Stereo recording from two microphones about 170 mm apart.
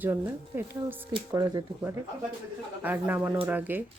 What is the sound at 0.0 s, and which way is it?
Speech, 10° right (ahead or behind).